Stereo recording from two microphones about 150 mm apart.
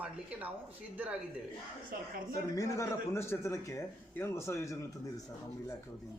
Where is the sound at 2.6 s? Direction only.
20° left (ahead or behind).